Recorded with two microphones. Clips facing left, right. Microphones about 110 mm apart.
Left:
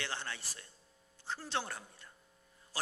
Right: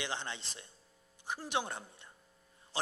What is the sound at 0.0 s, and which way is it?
A man's voice, 20° right (ahead or behind).